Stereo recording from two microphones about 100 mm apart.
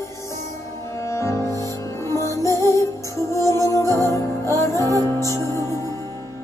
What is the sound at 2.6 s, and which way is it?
Music, 40° right (ahead or behind).